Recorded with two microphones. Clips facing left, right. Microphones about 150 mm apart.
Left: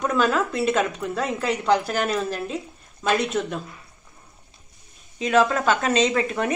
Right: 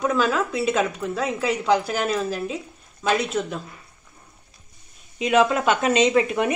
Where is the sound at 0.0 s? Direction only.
Centre (ahead or behind).